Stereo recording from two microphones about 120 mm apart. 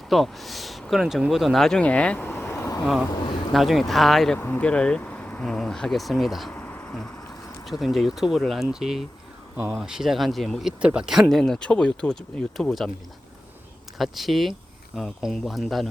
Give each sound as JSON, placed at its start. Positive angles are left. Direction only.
{"t": 0.1, "sound": "speech", "side_deg": 0}
{"t": 2.8, "sound": "speech", "side_deg": 0}
{"t": 3.1, "sound": "speech", "side_deg": 40}
{"t": 3.5, "sound": "speech", "side_deg": 0}
{"t": 4.4, "sound": "speech", "side_deg": 15}
{"t": 6.5, "sound": "insect", "side_deg": 15}
{"t": 7.6, "sound": "speech", "side_deg": 0}
{"t": 14.0, "sound": "speech", "side_deg": 0}